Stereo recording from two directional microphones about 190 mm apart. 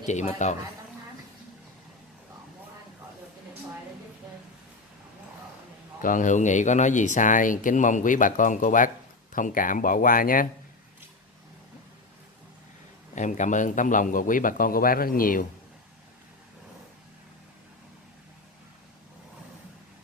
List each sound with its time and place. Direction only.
0.0 s speech: 40° left (ahead or behind)
5.9 s speech: 45° left (ahead or behind)
13.1 s speech: 40° left (ahead or behind)